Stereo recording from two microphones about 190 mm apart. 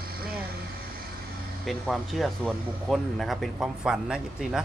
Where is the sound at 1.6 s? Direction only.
Centre (ahead or behind).